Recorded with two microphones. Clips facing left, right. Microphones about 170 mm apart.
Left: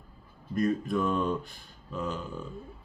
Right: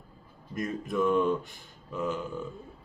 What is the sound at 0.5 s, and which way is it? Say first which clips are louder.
Speech: left 3 dB; 20° right (ahead or behind).